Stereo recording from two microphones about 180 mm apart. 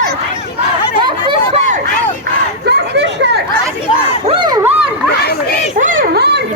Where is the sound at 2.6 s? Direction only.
70° right (ahead or behind).